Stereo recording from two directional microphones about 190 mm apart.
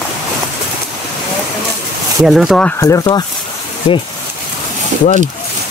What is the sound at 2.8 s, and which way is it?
Speech, 20° left (ahead or behind).